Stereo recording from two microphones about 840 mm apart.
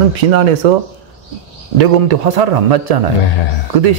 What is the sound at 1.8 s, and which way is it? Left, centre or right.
A man's voice, right.